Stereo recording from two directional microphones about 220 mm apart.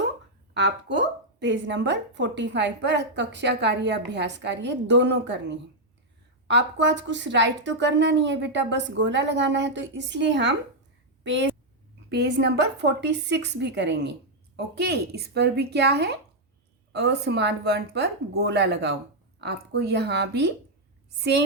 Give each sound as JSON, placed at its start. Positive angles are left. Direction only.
{"t": 0.5, "sound": "a woman's voice", "side_deg": -50}